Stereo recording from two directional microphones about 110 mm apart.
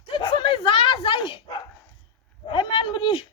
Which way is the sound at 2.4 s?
45° left (ahead or behind).